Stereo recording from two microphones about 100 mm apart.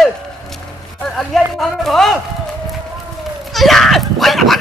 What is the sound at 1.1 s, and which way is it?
Speech, 5° left (ahead or behind).